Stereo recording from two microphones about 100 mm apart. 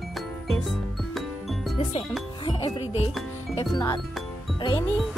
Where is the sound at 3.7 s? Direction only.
45° left (ahead or behind).